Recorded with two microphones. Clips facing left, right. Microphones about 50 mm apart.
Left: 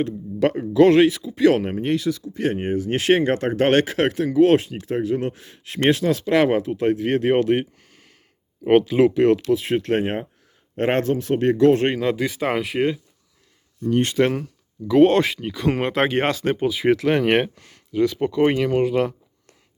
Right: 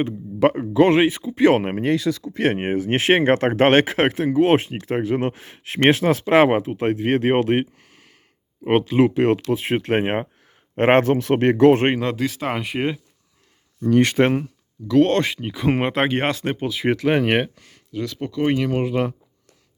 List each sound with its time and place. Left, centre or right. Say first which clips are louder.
0.0 s speech: right 2 dB; centre
1.0 s speech: even; right
2.4 s speech: right 2 dB; right
3.7 s speech: left 1 dB; right
4.5 s speech: even; right
6.6 s speech: left 1 dB; right
7.8 s a sound: right 1 dB; centre
8.6 s speech: left 2 dB; centre; by 11.9 s right
11.9 s speech: left 1 dB; centre
14.2 s speech: right 2 dB; right
14.8 s speech: left 2 dB; centre
15.4 s speech: right 1 dB; centre
17.9 s speech: left 6 dB; centre
18.5 s speech: left 2 dB; centre